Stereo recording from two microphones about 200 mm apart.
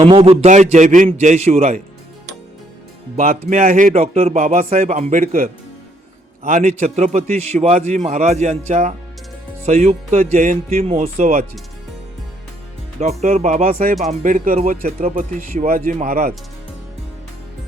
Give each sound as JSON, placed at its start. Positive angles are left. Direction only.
{"t": 0.0, "sound": "a man's voice", "side_deg": -30}
{"t": 3.2, "sound": "a man's voice", "side_deg": -40}
{"t": 3.9, "sound": "a man's voice", "side_deg": -30}
{"t": 13.0, "sound": "a man's voice", "side_deg": -35}